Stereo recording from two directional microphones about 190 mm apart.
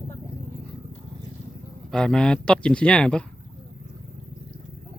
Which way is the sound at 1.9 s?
5° left (ahead or behind).